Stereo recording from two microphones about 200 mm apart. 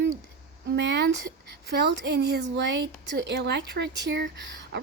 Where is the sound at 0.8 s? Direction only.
55° right (ahead or behind).